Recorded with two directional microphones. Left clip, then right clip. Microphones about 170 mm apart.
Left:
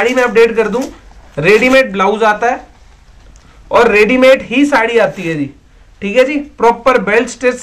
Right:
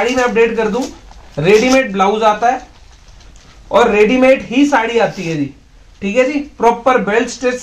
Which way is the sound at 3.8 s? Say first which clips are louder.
Left 3 dB; 5° left (ahead or behind).